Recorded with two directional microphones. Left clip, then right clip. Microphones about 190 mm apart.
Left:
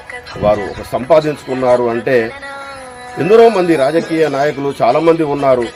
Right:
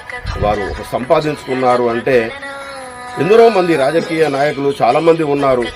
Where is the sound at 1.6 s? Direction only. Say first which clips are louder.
Left 1 dB; 20° left (ahead or behind).